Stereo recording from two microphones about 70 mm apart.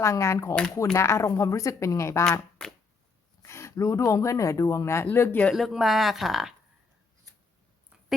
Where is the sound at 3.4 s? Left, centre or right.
Left.